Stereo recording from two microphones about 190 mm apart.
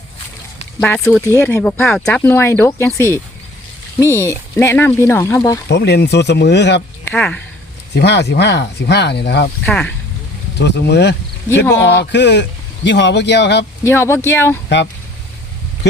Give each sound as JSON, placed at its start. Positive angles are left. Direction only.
{"t": 0.8, "sound": "speech", "side_deg": 5}
{"t": 5.6, "sound": "speech", "side_deg": 60}
{"t": 7.0, "sound": "speech", "side_deg": 5}
{"t": 7.9, "sound": "speech", "side_deg": 60}
{"t": 9.6, "sound": "speech", "side_deg": 5}
{"t": 10.6, "sound": "speech", "side_deg": 65}
{"t": 13.8, "sound": "speech", "side_deg": 15}